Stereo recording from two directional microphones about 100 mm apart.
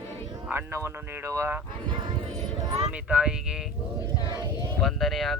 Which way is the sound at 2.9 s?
10° right (ahead or behind).